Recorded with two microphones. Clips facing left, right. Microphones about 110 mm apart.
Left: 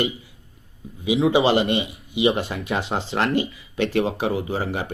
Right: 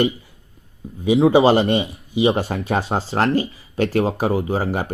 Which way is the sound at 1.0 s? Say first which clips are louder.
Right 5 dB; 40° right (ahead or behind).